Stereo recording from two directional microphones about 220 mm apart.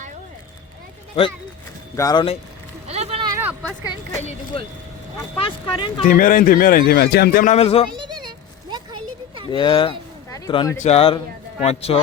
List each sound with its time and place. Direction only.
2.0 s speech: 20° left (ahead or behind)
2.8 s a sound: 30° right (ahead or behind); by 3.8 s 10° right (ahead or behind)
4.2 s speech: 30° left (ahead or behind)
6.1 s speech: 40° left (ahead or behind)
7.5 s speech: 25° left (ahead or behind)
7.9 s a sound: 20° right (ahead or behind)
9.5 s speech: 20° left (ahead or behind)